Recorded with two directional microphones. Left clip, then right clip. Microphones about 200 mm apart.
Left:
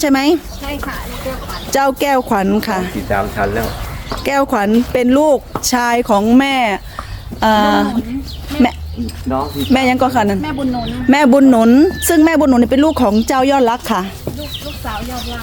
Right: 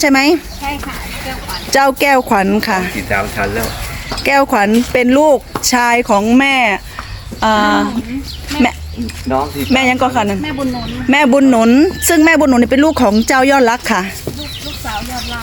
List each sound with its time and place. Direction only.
0.0 s speech: centre (ahead or behind)
1.7 s speech: centre (ahead or behind)
3.1 s speech: 20° left (ahead or behind)
4.2 s speech: centre (ahead or behind)
7.3 s speech: 20° left (ahead or behind)
9.3 s speech: 35° right (ahead or behind)
9.7 s speech: 15° left (ahead or behind); by 14.1 s centre (ahead or behind)